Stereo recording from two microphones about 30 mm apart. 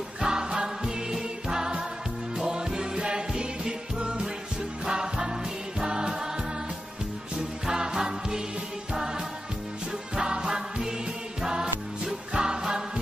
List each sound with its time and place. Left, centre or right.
0.2 s music: right
4.8 s music: right
7.6 s music: right
10.1 s music: right